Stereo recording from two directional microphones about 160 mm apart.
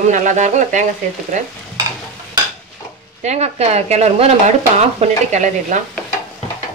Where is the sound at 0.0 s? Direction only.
50° right (ahead or behind).